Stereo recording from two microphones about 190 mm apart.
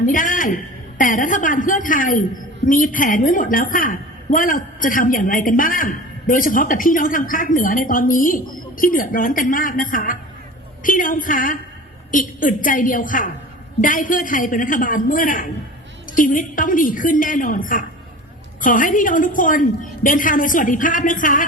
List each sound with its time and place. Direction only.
0.0 s a woman's voice: 45° left (ahead or behind)